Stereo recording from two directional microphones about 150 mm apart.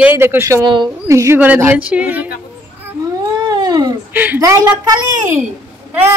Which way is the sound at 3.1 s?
25° right (ahead or behind).